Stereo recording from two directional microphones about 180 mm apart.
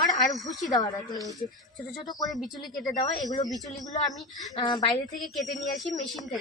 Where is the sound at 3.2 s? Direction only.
20° left (ahead or behind).